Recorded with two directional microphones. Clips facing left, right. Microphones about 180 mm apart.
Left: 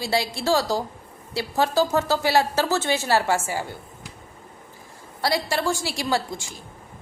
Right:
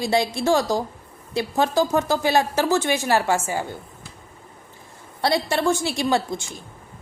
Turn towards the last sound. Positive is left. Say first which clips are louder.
# right 3 dB
turn(degrees=-20)  # may be behind; listen again after turning